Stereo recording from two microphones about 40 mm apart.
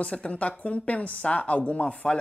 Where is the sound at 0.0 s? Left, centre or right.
Left.